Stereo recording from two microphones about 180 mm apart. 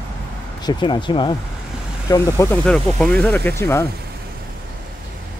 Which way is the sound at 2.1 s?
15° left (ahead or behind).